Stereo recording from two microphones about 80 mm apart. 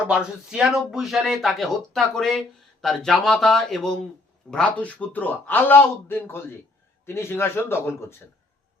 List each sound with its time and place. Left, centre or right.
0.1 s speech: centre
4.5 s speech: centre; by 8.1 s left